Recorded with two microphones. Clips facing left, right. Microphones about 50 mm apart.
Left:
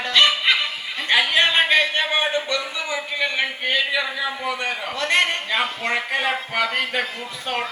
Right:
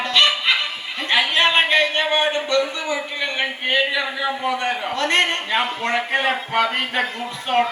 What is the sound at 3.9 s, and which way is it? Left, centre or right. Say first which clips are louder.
Speech: right 1 dB; centre.